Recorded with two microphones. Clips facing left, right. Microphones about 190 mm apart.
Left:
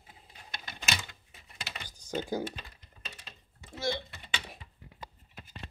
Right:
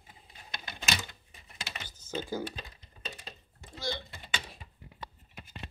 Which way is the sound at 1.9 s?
15° left (ahead or behind).